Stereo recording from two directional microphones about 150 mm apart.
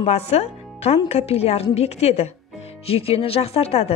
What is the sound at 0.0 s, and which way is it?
Speech, 45° left (ahead or behind).